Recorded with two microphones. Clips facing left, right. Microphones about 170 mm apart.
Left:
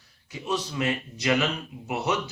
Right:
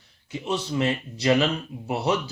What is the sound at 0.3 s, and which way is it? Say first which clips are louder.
A man's voice: right 2 dB; 25° right (ahead or behind).